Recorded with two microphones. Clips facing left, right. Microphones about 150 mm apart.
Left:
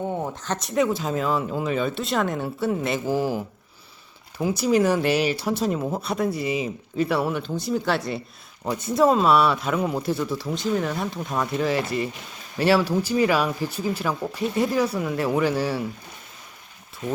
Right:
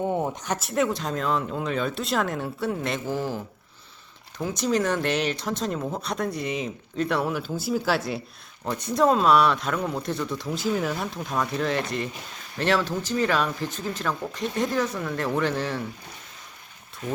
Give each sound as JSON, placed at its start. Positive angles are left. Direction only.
{"t": 0.0, "sound": "speech", "side_deg": -15}